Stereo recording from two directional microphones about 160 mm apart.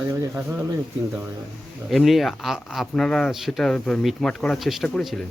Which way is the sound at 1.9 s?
Centre (ahead or behind).